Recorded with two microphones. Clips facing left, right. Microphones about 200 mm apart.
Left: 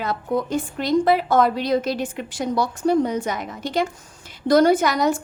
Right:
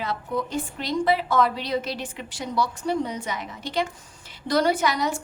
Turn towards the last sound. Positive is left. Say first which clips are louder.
# left 6 dB
turn(degrees=45)  # may be behind; listen again after turning